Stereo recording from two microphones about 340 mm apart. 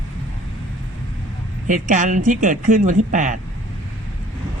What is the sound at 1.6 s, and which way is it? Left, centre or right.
Speech, right.